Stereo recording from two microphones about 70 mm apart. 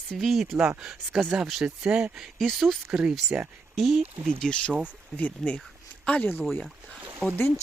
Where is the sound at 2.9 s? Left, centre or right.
Centre.